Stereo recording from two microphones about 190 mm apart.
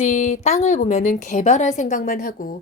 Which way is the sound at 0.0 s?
40° left (ahead or behind).